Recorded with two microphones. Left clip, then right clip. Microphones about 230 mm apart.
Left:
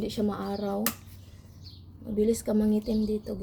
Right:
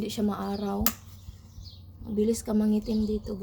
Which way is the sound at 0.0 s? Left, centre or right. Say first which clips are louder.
Even; centre.